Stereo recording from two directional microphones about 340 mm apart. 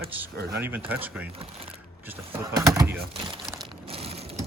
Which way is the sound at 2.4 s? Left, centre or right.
Centre.